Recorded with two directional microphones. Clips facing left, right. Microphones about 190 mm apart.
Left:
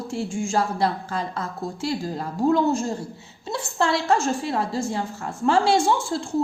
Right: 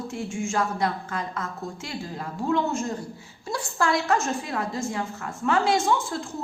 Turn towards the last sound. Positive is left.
turn(degrees=30)  # may be behind; listen again after turning